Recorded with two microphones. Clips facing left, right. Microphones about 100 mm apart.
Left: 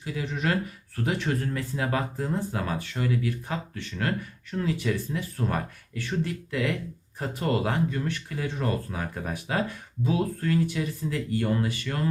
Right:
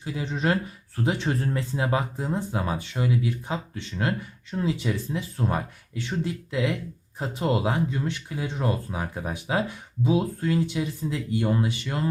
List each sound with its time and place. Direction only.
0.0 s speech: 25° right (ahead or behind)